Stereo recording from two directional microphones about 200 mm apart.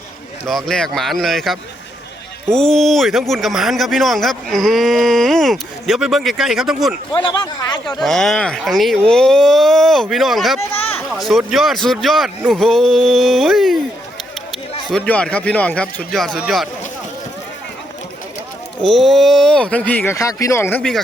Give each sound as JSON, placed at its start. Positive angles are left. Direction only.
{"t": 0.4, "sound": "speech", "side_deg": 0}
{"t": 7.3, "sound": "speech", "side_deg": 20}
{"t": 7.9, "sound": "speech", "side_deg": 0}
{"t": 14.8, "sound": "speech", "side_deg": 5}
{"t": 18.8, "sound": "speech", "side_deg": 0}